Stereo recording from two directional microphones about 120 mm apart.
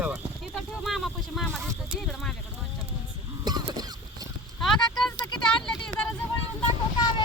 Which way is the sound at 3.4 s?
35° right (ahead or behind).